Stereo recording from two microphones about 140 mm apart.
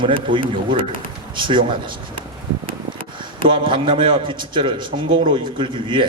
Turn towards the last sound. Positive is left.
turn(degrees=-35)  # may be behind; listen again after turning